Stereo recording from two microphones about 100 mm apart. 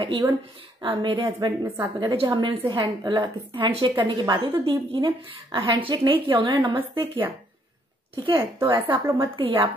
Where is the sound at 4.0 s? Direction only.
40° right (ahead or behind).